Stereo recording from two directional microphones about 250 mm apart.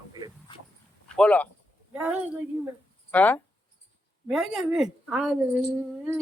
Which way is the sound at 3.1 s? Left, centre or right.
Centre.